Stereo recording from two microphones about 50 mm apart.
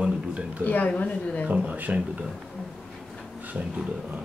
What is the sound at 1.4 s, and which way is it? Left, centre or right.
Speech, right.